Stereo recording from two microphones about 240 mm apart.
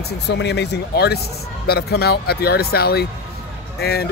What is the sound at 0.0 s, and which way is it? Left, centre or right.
A man's voice, left.